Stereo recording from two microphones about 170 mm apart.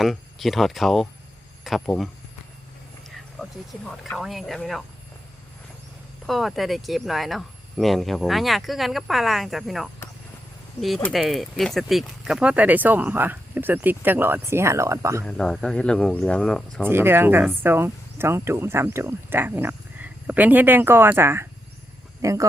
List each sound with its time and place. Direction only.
0.0 s speech: centre (ahead or behind)
3.4 s speech: centre (ahead or behind)
6.2 s speech: centre (ahead or behind); by 15.2 s 15° right (ahead or behind)
15.2 s speech: 5° left (ahead or behind)
16.8 s speech: 15° right (ahead or behind)